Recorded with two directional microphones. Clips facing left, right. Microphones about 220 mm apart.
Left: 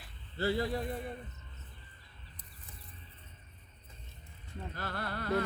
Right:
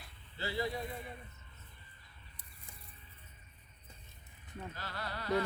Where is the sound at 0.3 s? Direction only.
50° left (ahead or behind).